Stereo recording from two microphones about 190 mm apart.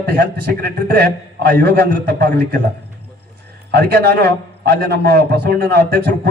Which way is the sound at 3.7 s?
55° right (ahead or behind).